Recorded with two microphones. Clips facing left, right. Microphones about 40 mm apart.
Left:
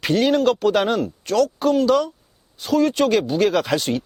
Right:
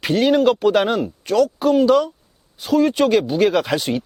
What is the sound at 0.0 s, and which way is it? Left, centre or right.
Speech, centre.